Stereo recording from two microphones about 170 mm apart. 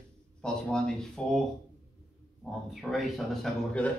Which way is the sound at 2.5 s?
Centre (ahead or behind).